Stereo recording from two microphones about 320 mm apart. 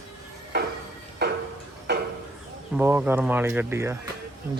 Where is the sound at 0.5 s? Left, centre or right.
Right.